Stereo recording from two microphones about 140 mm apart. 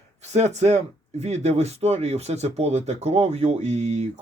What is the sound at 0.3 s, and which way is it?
Speech, 50° right (ahead or behind).